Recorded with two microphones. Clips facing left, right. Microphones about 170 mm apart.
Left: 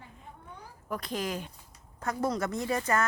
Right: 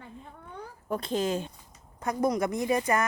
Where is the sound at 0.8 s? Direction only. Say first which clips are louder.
Right 5 dB; 25° right (ahead or behind).